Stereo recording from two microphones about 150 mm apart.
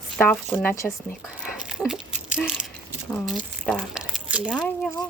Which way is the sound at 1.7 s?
Centre (ahead or behind).